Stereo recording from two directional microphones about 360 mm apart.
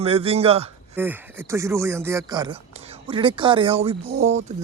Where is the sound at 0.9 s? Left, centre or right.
Centre.